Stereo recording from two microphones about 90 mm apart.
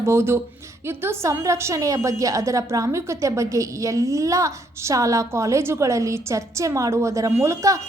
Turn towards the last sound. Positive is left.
turn(degrees=-35)  # may be behind; listen again after turning